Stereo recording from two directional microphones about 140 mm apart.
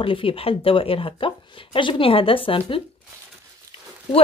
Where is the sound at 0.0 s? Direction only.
40° left (ahead or behind).